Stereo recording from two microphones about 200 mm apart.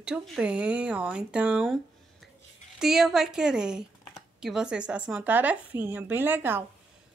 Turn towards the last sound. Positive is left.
turn(degrees=-10)  # may be behind; listen again after turning